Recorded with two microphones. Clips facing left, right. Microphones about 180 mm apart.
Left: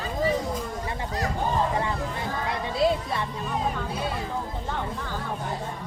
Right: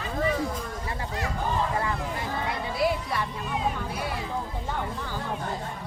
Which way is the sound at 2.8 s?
25° left (ahead or behind).